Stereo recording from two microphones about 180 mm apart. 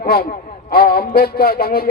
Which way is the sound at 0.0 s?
55° left (ahead or behind).